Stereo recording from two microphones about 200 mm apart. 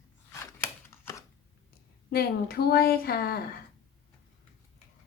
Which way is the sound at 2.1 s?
50° left (ahead or behind).